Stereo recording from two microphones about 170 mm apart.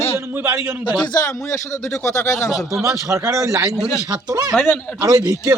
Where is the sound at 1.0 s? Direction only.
20° left (ahead or behind).